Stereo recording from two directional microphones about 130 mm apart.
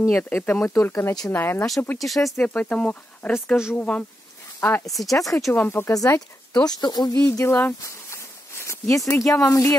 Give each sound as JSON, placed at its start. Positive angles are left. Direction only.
{"t": 0.0, "sound": "speech", "side_deg": 20}
{"t": 2.0, "sound": "speech", "side_deg": 0}
{"t": 7.2, "sound": "speech", "side_deg": 20}